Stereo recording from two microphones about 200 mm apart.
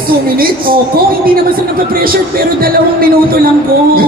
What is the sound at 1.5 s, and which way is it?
Speech, 45° right (ahead or behind).